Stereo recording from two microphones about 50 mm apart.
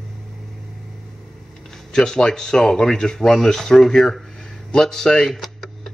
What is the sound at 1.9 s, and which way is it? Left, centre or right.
A man's voice, centre.